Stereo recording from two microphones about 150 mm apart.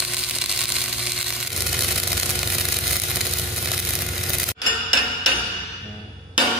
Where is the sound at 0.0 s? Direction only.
5° right (ahead or behind).